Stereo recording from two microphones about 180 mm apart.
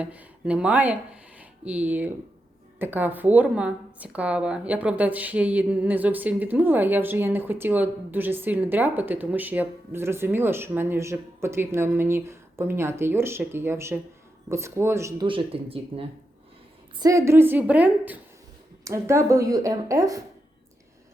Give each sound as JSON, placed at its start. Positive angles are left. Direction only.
{"t": 0.0, "sound": "a woman's voice", "side_deg": -5}
{"t": 15.3, "sound": "speech", "side_deg": -30}
{"t": 17.0, "sound": "a woman's voice", "side_deg": -15}